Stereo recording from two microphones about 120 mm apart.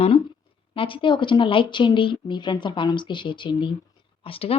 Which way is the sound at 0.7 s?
45° left (ahead or behind).